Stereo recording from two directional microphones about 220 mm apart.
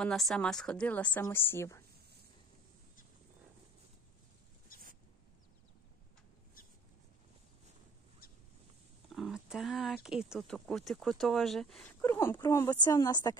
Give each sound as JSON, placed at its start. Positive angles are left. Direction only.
{"t": 0.0, "sound": "a woman's voice", "side_deg": 0}
{"t": 9.1, "sound": "speech", "side_deg": 0}